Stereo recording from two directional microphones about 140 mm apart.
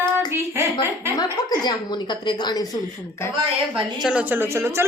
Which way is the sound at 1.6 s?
30° left (ahead or behind).